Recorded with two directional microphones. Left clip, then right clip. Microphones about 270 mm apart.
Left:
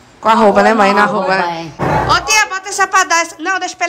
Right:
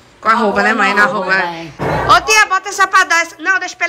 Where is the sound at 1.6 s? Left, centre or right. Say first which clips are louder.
Left 3 dB; centre.